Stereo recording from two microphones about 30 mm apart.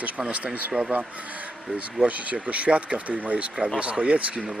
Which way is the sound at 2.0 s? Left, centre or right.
Right.